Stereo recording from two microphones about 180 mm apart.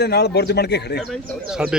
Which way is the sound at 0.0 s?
65° left (ahead or behind).